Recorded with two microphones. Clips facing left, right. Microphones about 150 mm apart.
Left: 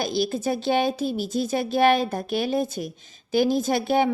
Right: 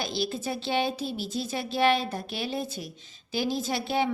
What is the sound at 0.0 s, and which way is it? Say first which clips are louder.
A woman's voice: left 6 dB; 45° left (ahead or behind).